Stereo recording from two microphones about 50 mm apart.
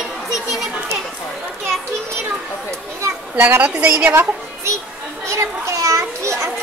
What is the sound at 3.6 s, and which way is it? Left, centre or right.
Speech, right.